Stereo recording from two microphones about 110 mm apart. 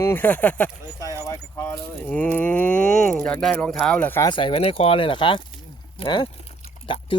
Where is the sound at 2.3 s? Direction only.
15° left (ahead or behind).